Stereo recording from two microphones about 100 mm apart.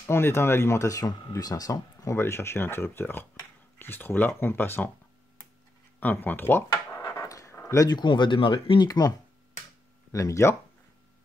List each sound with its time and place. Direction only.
0.0 s speech: 25° left (ahead or behind)
5.9 s speech: 15° left (ahead or behind)
7.1 s a sound: 30° left (ahead or behind)
8.0 s speech: 50° left (ahead or behind)
8.8 s speech: 40° left (ahead or behind)
10.1 s speech: 30° left (ahead or behind)